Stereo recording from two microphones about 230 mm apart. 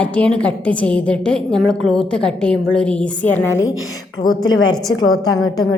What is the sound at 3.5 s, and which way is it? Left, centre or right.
Speech, left.